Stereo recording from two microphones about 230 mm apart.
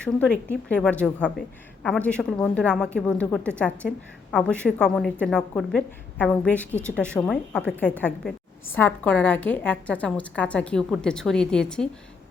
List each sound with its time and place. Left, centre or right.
0.0 s a woman's voice: centre